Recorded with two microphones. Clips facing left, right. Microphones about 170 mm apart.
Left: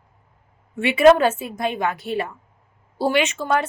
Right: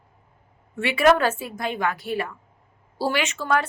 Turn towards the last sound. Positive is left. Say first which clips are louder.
# left 3 dB
turn(degrees=20)  # may be behind; listen again after turning